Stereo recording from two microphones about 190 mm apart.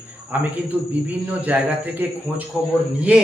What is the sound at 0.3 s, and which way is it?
A man's voice, 10° right (ahead or behind).